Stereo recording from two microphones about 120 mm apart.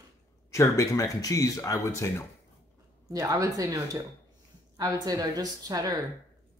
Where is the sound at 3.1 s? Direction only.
30° right (ahead or behind).